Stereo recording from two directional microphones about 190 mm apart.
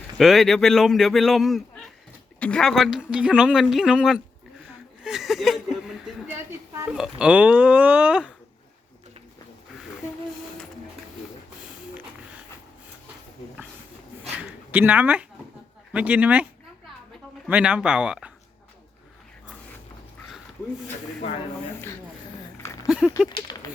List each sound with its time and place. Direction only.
0.2 s speech: centre (ahead or behind)
14.3 s a sound: 10° right (ahead or behind)
15.9 s speech: 5° right (ahead or behind)
17.5 s speech: 5° right (ahead or behind)
22.6 s a sound: 15° left (ahead or behind)
22.9 s speech: centre (ahead or behind)
23.3 s speech: 20° left (ahead or behind)